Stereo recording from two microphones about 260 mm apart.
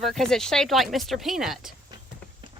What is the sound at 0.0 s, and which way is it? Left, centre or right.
Speech, centre.